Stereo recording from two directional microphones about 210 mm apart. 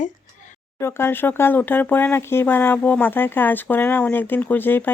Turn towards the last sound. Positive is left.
turn(degrees=10)  # may be behind; listen again after turning